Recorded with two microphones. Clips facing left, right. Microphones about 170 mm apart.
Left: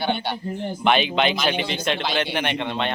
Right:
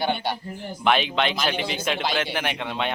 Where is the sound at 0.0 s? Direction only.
10° right (ahead or behind).